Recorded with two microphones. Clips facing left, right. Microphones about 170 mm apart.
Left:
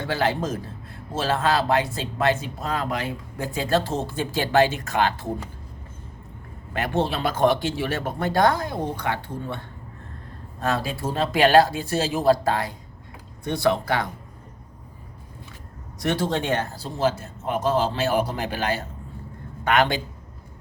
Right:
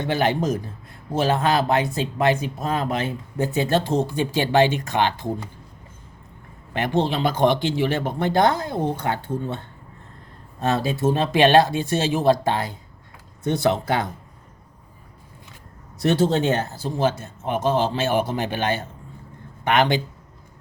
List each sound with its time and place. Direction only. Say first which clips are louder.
0.0 s speech: right 3 dB; 20° right (ahead or behind)
6.7 s speech: right 2 dB; 20° right (ahead or behind)
10.6 s speech: right 4 dB; 25° right (ahead or behind)
16.0 s speech: right 5 dB; 25° right (ahead or behind)